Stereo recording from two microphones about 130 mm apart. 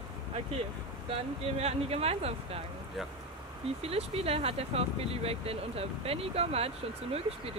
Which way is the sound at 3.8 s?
50° right (ahead or behind).